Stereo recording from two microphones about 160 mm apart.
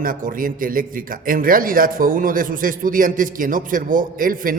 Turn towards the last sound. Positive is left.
turn(degrees=-60)  # may be behind; listen again after turning